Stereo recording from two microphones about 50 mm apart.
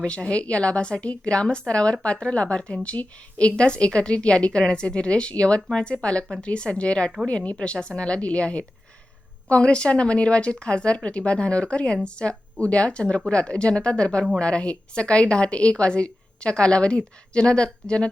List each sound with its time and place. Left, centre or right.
0.0 s a woman's voice: centre